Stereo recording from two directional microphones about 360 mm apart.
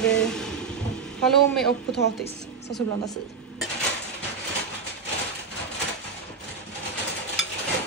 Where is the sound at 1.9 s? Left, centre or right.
Left.